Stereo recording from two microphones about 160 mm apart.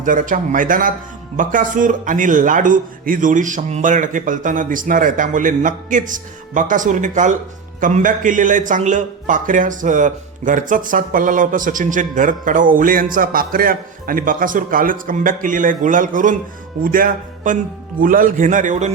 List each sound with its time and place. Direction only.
0.0 s a man's voice: 55° right (ahead or behind)